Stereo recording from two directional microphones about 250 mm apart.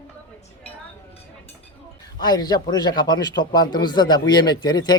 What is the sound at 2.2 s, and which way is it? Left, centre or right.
Speech, centre.